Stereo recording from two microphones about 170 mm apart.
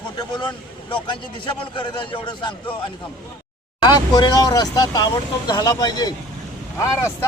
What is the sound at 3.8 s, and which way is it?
A man's voice, 25° left (ahead or behind).